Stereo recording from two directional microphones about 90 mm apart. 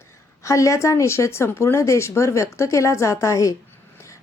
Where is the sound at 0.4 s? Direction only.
35° left (ahead or behind).